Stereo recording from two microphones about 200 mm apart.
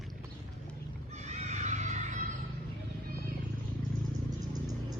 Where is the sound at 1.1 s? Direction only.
35° right (ahead or behind).